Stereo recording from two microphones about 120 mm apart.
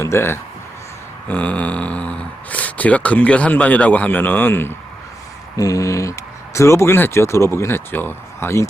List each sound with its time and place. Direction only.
0.0 s speech: 20° left (ahead or behind)
5.5 s speech: 30° left (ahead or behind)